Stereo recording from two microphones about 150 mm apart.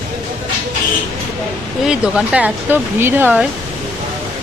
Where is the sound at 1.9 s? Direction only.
5° right (ahead or behind).